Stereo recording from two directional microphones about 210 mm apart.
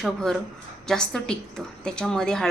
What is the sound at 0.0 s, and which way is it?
A woman's voice, 5° left (ahead or behind).